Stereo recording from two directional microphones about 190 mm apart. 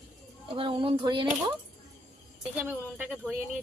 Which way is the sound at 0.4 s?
25° right (ahead or behind).